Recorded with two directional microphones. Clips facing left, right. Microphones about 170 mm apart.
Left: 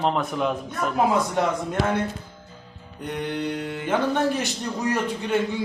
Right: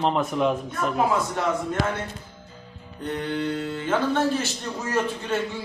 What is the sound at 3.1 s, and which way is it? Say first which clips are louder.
Speech: right 1 dB; 15° left (ahead or behind).